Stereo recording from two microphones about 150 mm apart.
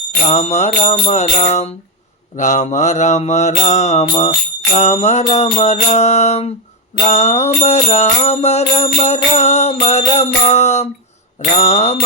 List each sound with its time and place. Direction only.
0.3 s music: 50° left (ahead or behind)
11.3 s mantra: 55° left (ahead or behind)